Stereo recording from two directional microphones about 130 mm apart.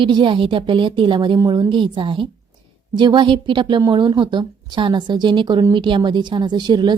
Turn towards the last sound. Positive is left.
turn(degrees=-35)  # may be behind; listen again after turning